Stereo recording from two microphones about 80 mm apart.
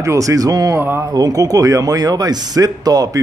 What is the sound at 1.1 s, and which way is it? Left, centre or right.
Speech, right.